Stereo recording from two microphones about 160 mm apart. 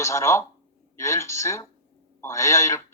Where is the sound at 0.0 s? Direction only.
20° left (ahead or behind).